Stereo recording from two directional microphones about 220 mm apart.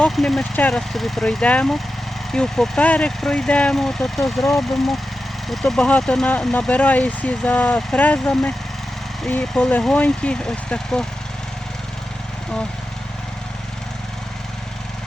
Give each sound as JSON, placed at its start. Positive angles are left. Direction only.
{"t": 0.0, "sound": "speech", "side_deg": 0}